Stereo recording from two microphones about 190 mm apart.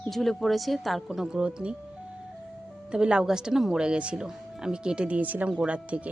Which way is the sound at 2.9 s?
5° right (ahead or behind).